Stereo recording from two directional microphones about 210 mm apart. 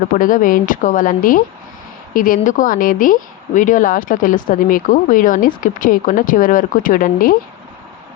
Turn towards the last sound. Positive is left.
turn(degrees=40)  # may be behind; listen again after turning